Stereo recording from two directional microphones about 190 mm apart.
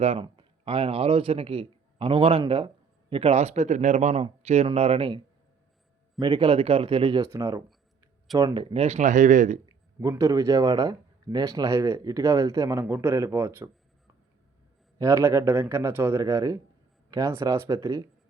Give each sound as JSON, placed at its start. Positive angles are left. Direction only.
{"t": 0.0, "sound": "speech", "side_deg": -30}
{"t": 7.3, "sound": "speech", "side_deg": -15}
{"t": 10.0, "sound": "speech", "side_deg": -15}
{"t": 14.9, "sound": "speech", "side_deg": -15}